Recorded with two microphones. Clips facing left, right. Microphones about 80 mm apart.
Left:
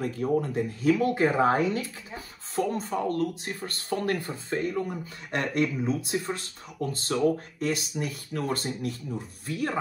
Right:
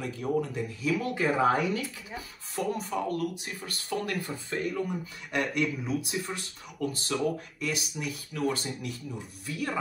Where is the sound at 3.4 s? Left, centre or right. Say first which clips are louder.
Left 4 dB; left.